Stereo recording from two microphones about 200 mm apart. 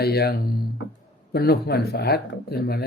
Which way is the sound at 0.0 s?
50° left (ahead or behind).